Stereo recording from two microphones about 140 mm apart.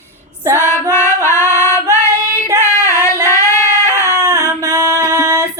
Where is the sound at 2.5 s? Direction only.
20° left (ahead or behind).